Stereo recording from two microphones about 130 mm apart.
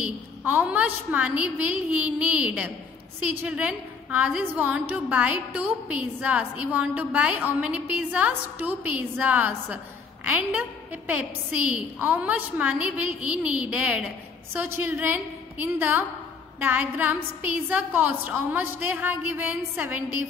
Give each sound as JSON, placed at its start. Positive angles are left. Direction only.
{"t": 0.4, "sound": "a woman's voice", "side_deg": -15}
{"t": 11.7, "sound": "a woman's voice", "side_deg": -10}